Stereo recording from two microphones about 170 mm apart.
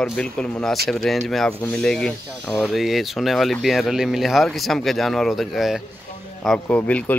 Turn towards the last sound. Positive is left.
turn(degrees=10)  # may be behind; listen again after turning